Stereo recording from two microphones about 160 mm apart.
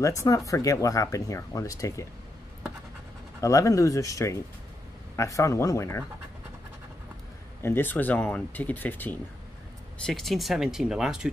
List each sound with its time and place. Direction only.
0.0 s speech: 20° left (ahead or behind)
3.3 s speech: 20° left (ahead or behind)
7.6 s speech: 15° left (ahead or behind); by 11.2 s 5° right (ahead or behind)